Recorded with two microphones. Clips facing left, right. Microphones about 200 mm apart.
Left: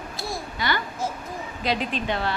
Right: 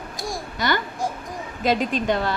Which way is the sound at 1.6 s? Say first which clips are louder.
Right 5 dB; 45° right (ahead or behind).